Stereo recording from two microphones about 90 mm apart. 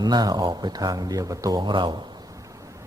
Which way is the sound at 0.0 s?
50° right (ahead or behind).